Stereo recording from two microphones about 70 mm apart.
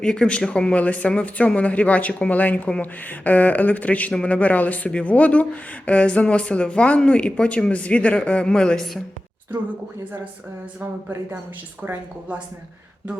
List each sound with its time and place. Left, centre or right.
0.0 s speech: centre
11.8 s a woman's voice: right